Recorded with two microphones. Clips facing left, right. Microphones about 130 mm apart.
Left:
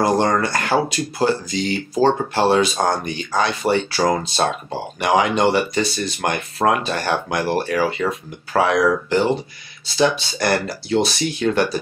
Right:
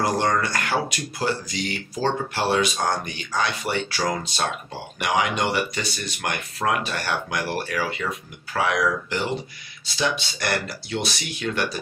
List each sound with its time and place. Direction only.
0.0 s speech: 30° left (ahead or behind)